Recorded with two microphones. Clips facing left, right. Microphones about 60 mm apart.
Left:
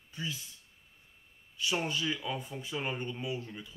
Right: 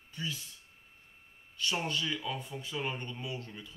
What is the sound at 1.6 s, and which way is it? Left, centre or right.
Speech, centre.